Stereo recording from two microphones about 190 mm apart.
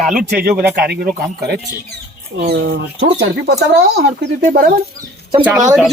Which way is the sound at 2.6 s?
75° right (ahead or behind).